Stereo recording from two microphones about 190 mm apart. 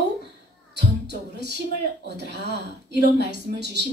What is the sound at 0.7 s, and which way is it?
Speech, 65° right (ahead or behind).